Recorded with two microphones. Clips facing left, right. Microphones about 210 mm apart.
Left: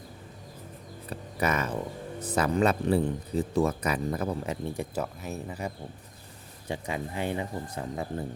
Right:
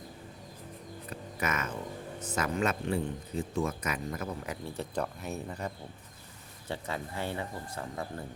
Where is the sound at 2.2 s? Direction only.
35° left (ahead or behind).